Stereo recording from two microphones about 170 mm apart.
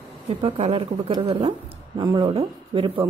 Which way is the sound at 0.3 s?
30° right (ahead or behind).